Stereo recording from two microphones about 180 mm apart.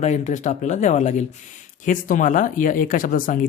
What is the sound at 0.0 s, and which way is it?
Speech, 40° left (ahead or behind).